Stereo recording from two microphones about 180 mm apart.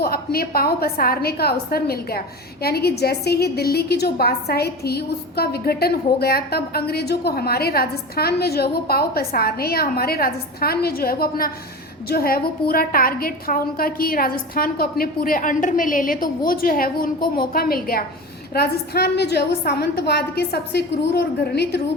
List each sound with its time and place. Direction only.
0.0 s a woman's voice: 55° left (ahead or behind)